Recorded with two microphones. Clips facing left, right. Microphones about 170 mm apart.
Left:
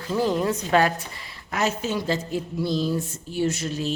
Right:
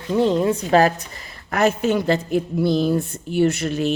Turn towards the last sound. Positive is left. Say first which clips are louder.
# right 6 dB
turn(degrees=-60)  # may be behind; listen again after turning